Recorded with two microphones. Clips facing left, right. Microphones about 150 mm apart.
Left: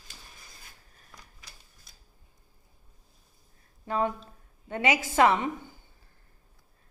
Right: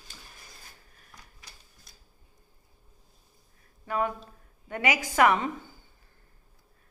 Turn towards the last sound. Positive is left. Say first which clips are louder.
# even
turn(degrees=25)  # may be behind; listen again after turning